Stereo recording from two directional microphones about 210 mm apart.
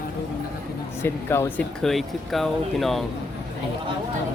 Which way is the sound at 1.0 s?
10° left (ahead or behind).